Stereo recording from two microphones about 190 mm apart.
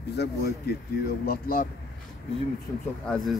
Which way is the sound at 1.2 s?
50° left (ahead or behind).